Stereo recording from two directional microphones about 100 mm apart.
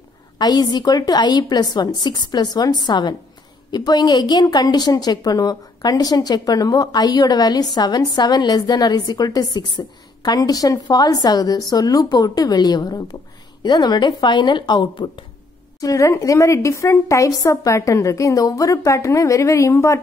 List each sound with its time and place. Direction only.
0.4 s a woman's voice: 45° left (ahead or behind)
15.8 s a woman's voice: 35° left (ahead or behind)